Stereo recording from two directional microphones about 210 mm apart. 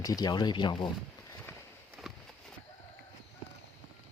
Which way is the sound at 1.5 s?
10° left (ahead or behind).